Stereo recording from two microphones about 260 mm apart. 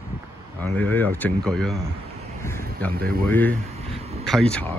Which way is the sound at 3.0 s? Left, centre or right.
Right.